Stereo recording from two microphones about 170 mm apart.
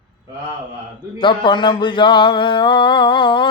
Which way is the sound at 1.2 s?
30° left (ahead or behind).